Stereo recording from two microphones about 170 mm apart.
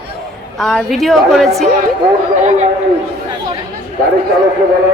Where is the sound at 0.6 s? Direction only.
Centre (ahead or behind).